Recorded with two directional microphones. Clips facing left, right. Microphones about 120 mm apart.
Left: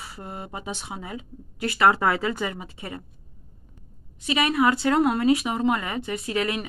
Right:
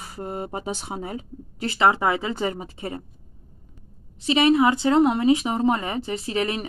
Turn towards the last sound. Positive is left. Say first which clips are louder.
# right 1 dB
turn(degrees=-30)  # may be behind; listen again after turning